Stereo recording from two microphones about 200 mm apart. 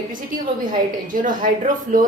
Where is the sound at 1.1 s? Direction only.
40° right (ahead or behind).